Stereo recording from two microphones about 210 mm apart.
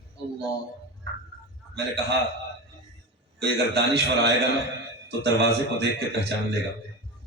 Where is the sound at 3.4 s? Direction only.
50° right (ahead or behind).